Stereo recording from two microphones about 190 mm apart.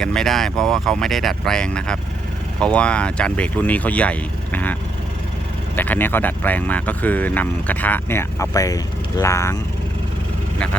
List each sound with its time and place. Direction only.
0.0 s speech: 5° left (ahead or behind)